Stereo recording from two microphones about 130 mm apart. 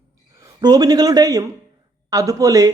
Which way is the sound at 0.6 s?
30° right (ahead or behind).